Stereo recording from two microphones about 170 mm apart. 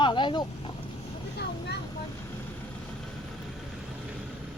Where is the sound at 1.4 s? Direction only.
75° left (ahead or behind).